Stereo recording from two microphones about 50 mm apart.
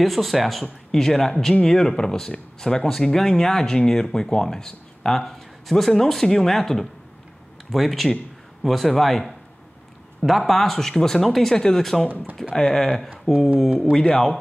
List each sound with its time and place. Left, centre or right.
0.0 s speech: centre